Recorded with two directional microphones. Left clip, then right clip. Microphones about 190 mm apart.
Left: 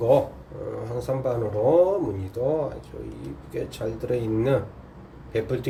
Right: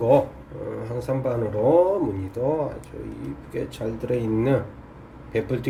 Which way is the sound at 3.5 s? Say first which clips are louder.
Even; 5° right (ahead or behind).